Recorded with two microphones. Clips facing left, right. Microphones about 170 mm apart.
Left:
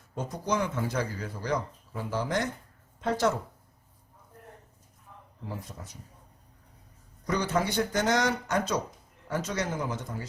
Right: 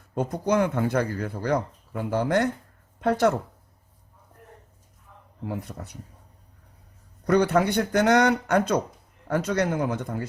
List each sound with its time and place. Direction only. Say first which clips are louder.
0.1 s speech: right 7 dB; 55° right (ahead or behind)
5.5 s speech: right 7 dB; 60° right (ahead or behind)
7.3 s speech: right 8 dB; 60° right (ahead or behind)